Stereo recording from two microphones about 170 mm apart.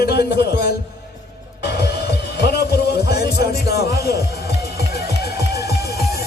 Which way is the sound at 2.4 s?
75° left (ahead or behind).